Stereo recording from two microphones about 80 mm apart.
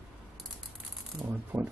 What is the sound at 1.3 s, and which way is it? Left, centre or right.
Speech, right.